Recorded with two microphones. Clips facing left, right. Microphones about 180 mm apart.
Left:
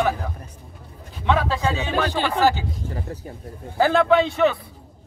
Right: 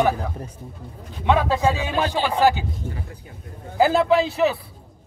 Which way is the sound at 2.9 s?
40° left (ahead or behind).